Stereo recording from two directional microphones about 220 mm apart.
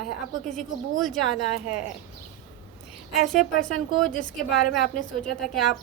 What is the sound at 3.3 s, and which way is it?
Speech, centre (ahead or behind).